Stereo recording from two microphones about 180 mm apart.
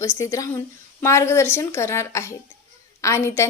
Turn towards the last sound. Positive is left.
turn(degrees=15)  # may be behind; listen again after turning